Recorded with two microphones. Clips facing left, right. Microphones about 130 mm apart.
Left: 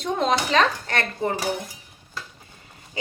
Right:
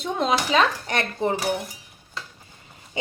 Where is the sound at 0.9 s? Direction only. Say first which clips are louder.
Right 1 dB; 20° right (ahead or behind).